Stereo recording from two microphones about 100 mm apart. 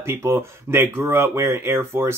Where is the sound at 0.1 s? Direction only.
25° right (ahead or behind).